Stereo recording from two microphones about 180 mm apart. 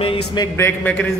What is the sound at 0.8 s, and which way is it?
Speech, 10° left (ahead or behind).